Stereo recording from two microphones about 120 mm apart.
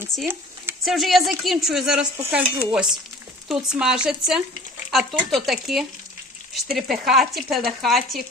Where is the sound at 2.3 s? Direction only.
10° right (ahead or behind).